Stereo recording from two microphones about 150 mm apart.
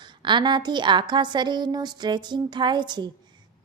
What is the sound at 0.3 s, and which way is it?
A woman's voice, 30° right (ahead or behind).